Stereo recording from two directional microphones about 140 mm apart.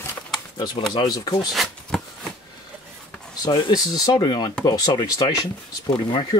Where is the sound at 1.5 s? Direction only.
Centre (ahead or behind).